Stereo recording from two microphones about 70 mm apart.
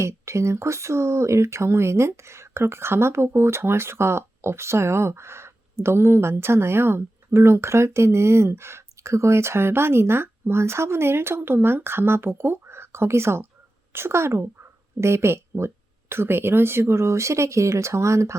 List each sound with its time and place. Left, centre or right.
0.0 s speech: right